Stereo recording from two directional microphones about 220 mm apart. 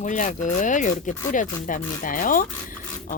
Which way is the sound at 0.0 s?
35° left (ahead or behind).